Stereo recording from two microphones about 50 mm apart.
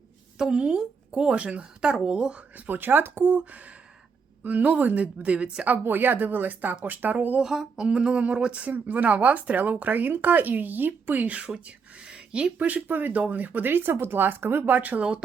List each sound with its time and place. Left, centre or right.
0.3 s a woman's voice: centre
2.6 s speech: right
4.4 s a woman's voice: right
5.6 s speech: right
7.4 s a sound: centre
7.9 s a woman's voice: centre
12.0 s a sound: right
12.5 s speech: right
14.8 s speech: right